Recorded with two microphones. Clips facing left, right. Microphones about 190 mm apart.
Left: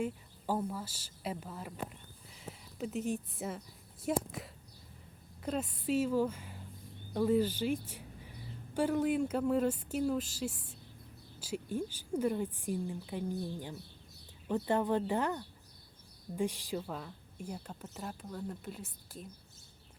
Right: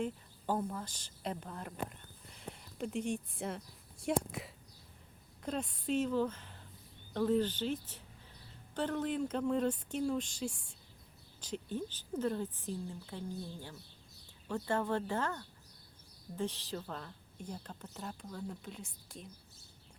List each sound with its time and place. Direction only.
0.0 s a woman's voice: 10° left (ahead or behind)